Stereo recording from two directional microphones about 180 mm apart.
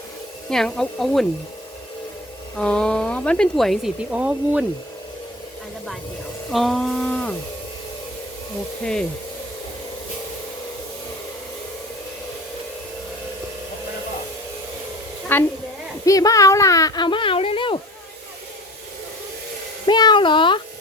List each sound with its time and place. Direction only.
0.5 s speech: 5° left (ahead or behind)
2.6 s speech: 5° left (ahead or behind)
6.5 s a sound: centre (ahead or behind)
8.8 s speech: 5° left (ahead or behind)
15.3 s a woman's voice: 10° left (ahead or behind); by 17.7 s 30° left (ahead or behind)
19.8 s speech: 25° left (ahead or behind)